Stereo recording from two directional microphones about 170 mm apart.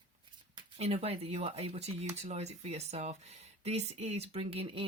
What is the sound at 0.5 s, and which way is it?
Speech, 35° right (ahead or behind).